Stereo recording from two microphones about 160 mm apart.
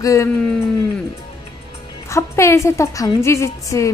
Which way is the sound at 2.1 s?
20° left (ahead or behind).